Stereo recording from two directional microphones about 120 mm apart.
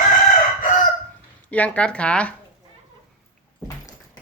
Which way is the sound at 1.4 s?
10° left (ahead or behind).